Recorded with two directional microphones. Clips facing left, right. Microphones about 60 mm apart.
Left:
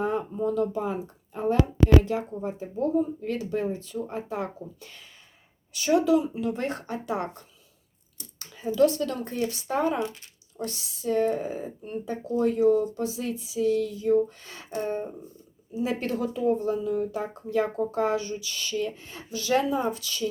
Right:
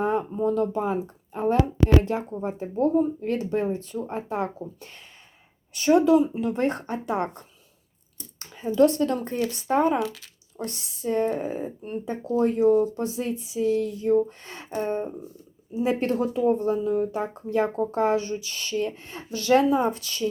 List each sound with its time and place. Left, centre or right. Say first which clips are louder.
0.0 s speech: right 3 dB; right